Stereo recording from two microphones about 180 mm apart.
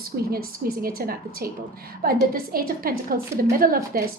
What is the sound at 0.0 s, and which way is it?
A woman's voice, 55° right (ahead or behind).